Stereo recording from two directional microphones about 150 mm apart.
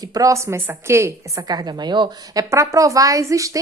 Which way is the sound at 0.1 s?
20° right (ahead or behind).